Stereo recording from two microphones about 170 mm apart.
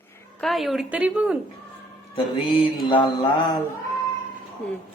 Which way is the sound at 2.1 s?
35° left (ahead or behind).